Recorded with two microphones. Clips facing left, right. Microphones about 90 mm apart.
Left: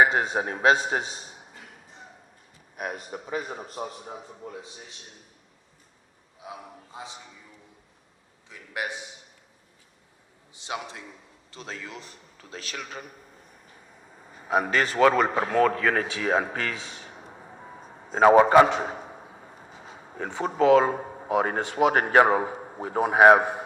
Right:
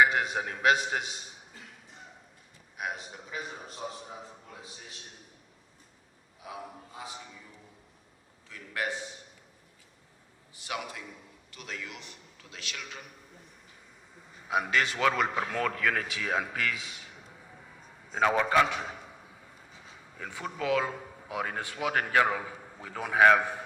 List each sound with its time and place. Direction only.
0.0 s a man's voice: 35° left (ahead or behind)
2.7 s speech: 45° left (ahead or behind)
4.4 s a man's voice: 35° left (ahead or behind)
6.4 s a man's voice: 25° left (ahead or behind)
8.4 s a man's voice: 20° left (ahead or behind)
10.5 s a man's voice: 25° left (ahead or behind); by 13.1 s 40° left (ahead or behind)
14.3 s a sound: 45° left (ahead or behind)
20.4 s a man's voice: 45° left (ahead or behind)
23.4 s a man's voice: 20° left (ahead or behind)